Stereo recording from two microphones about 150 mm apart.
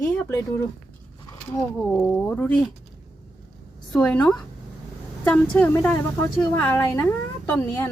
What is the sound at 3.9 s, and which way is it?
Speech, 10° left (ahead or behind).